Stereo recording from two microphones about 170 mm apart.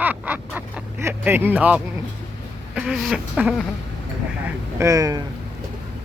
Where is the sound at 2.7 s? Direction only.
5° right (ahead or behind).